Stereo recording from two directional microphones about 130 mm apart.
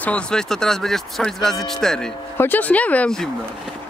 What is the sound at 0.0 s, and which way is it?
Speech, 10° left (ahead or behind).